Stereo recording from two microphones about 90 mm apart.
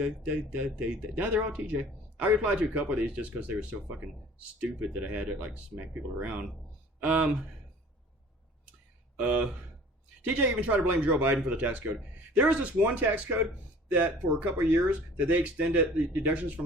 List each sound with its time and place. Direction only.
0.0 s speech: 15° right (ahead or behind)
9.1 s speech: 15° right (ahead or behind)